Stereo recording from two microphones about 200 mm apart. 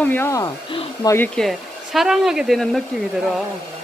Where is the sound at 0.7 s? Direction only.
25° left (ahead or behind).